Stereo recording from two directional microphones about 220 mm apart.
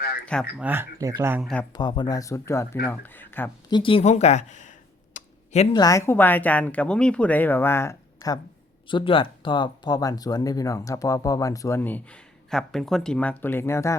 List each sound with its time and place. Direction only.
0.6 s speech: 10° right (ahead or behind)
1.7 s speech: 20° left (ahead or behind)
3.7 s speech: 20° left (ahead or behind)
5.1 s a sound: 30° left (ahead or behind)
5.7 s speech: 15° left (ahead or behind)